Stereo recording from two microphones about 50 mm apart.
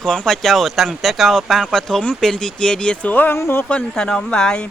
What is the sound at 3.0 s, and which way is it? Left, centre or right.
Speech, left.